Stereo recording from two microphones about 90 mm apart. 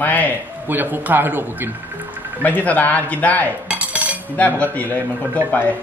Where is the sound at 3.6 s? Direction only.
15° right (ahead or behind).